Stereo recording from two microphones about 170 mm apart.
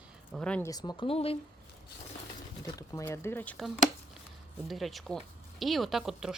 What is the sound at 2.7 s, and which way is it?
Speech, 20° left (ahead or behind).